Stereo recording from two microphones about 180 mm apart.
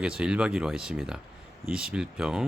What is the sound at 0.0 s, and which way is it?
Speech, 5° right (ahead or behind).